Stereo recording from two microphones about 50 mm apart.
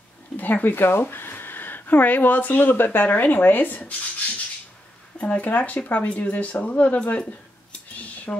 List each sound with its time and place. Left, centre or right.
0.4 s speech: left
5.2 s speech: left
8.0 s cutlery: left